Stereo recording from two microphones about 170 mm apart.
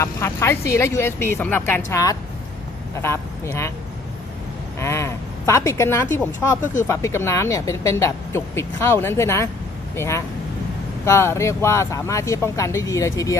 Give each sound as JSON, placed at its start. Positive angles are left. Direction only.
{"t": 0.0, "sound": "a man's voice", "side_deg": 15}
{"t": 4.8, "sound": "speech", "side_deg": 15}